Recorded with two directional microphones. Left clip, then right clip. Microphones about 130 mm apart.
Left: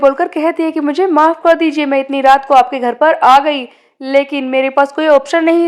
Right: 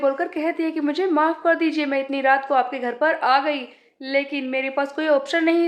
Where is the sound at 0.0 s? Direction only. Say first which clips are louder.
Left 10 dB; 55° left (ahead or behind).